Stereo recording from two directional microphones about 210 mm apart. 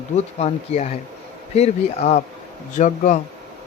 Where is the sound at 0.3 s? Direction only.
30° left (ahead or behind).